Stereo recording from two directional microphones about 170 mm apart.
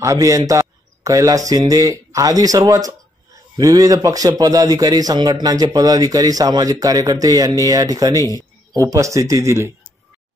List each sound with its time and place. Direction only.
0.0 s a man's voice: 20° right (ahead or behind)